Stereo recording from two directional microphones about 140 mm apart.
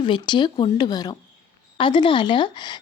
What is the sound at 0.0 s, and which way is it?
A woman's voice, 35° left (ahead or behind).